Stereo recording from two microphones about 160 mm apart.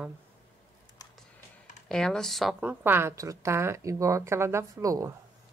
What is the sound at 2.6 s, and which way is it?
A woman's voice, 10° right (ahead or behind).